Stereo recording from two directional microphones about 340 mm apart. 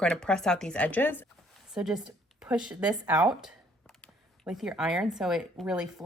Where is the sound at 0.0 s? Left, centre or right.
Centre.